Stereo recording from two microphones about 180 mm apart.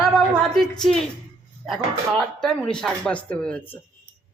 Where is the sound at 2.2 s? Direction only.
5° left (ahead or behind).